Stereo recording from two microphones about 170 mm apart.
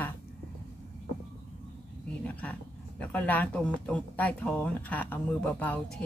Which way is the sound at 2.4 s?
10° left (ahead or behind).